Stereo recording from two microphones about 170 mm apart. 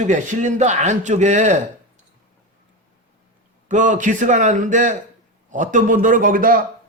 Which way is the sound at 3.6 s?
45° right (ahead or behind).